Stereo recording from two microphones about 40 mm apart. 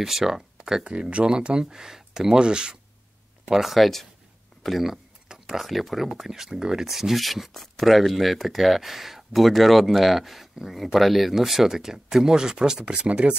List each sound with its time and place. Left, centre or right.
0.0 s speech: centre
1.1 s speech: right
3.4 s speech: centre
12.9 s speech: right